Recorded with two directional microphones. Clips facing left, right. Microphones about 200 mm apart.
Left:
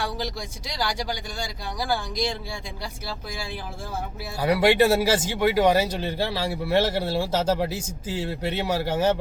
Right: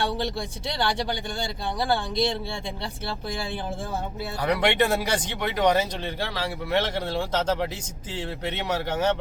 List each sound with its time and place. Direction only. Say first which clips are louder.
0.8 s speech: right 1 dB; 30° right (ahead or behind)
4.4 s speech: left 4 dB; 5° left (ahead or behind)